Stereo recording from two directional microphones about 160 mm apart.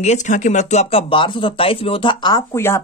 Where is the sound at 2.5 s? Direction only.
15° left (ahead or behind).